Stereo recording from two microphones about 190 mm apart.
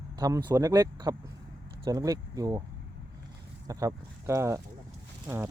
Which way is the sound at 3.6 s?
20° right (ahead or behind).